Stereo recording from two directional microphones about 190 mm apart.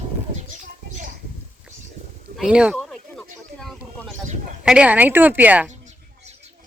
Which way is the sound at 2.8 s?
5° left (ahead or behind).